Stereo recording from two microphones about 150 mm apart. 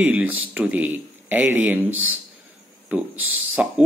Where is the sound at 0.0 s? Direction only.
10° right (ahead or behind).